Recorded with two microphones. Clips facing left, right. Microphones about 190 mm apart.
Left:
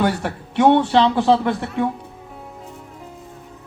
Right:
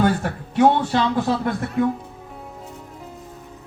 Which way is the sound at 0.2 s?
70° left (ahead or behind).